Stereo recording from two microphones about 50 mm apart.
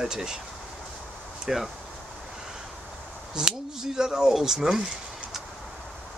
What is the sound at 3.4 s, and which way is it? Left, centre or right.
Speech, centre.